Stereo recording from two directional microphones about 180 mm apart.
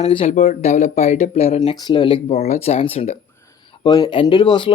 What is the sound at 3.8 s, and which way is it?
Speech, 25° left (ahead or behind).